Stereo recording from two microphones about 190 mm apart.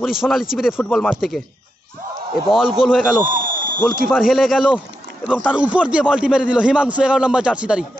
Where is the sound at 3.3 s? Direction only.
45° right (ahead or behind).